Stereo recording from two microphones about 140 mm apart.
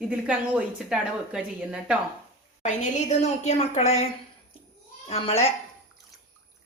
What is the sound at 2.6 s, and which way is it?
A woman's voice, 55° left (ahead or behind).